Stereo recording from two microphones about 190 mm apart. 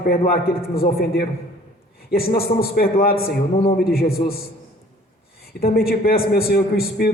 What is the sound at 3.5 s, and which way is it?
Speech, 30° left (ahead or behind).